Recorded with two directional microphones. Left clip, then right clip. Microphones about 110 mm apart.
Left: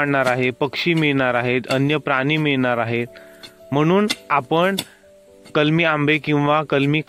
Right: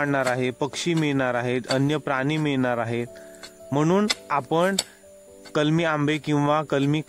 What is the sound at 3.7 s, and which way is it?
Speech, 10° left (ahead or behind).